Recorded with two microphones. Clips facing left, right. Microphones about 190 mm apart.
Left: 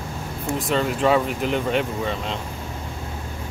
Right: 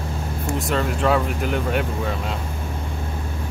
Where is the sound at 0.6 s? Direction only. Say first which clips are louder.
Left 1 dB; centre (ahead or behind).